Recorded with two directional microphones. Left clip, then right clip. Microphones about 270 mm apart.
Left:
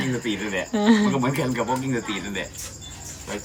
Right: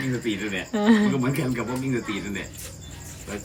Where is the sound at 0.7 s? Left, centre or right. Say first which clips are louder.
Left 1 dB; centre.